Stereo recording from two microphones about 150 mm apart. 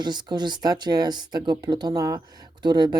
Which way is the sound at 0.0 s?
30° right (ahead or behind).